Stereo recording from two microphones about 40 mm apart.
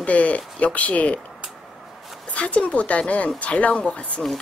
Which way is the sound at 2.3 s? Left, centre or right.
Left.